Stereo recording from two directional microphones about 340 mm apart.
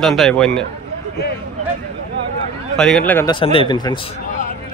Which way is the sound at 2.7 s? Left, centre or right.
Centre.